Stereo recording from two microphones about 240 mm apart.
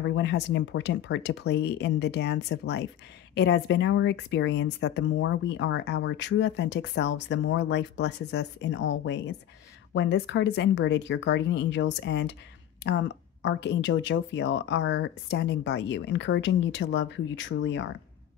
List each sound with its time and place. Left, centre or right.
0.1 s a woman's voice: left